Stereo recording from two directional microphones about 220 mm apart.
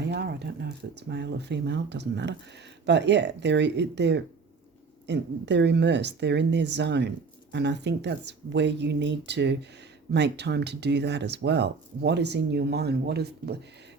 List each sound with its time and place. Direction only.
0.0 s speech: 50° right (ahead or behind)